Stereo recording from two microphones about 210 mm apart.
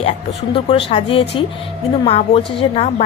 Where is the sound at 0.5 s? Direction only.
25° left (ahead or behind).